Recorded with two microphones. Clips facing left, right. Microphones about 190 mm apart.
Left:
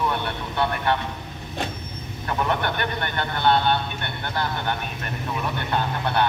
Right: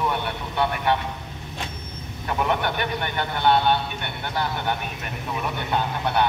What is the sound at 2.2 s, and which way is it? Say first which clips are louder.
A man's voice: right 1 dB; 10° right (ahead or behind).